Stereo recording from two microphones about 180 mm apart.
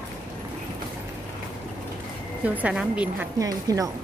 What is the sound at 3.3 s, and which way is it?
Speech, 20° right (ahead or behind).